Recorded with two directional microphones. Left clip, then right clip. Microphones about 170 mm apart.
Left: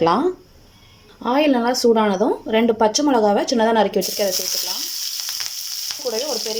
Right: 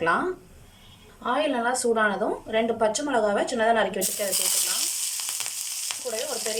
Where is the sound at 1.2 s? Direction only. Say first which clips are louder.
Left 7 dB; 35° left (ahead or behind).